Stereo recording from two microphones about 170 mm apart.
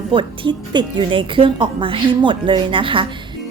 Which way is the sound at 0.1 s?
30° right (ahead or behind).